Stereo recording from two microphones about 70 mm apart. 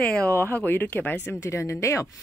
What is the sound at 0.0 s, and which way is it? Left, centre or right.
Speech, centre.